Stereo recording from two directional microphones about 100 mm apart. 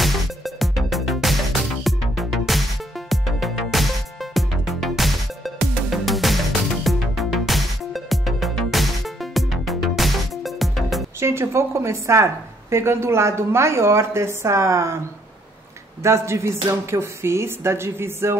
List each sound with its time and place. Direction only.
0.6 s music: centre (ahead or behind)
11.1 s a woman's voice: 25° right (ahead or behind)
16.0 s a woman's voice: 30° right (ahead or behind)